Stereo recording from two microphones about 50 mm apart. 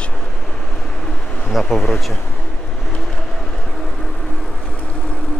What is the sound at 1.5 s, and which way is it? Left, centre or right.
Speech, centre.